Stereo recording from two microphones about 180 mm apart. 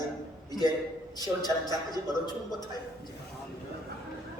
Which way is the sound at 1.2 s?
20° left (ahead or behind).